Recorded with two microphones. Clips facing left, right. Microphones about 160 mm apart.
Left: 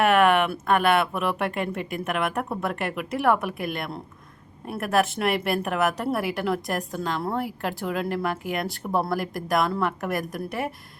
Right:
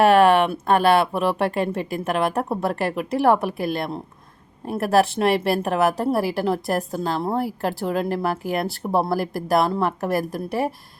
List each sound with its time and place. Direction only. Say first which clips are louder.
0.0 s a woman's voice: right 4 dB; 30° right (ahead or behind)